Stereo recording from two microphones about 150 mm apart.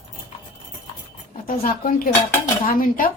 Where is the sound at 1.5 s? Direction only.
70° left (ahead or behind).